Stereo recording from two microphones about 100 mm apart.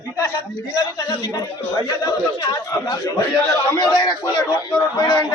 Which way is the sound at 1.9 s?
40° left (ahead or behind).